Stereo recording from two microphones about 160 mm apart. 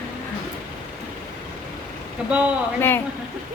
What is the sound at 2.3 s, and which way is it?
Speech, 5° right (ahead or behind).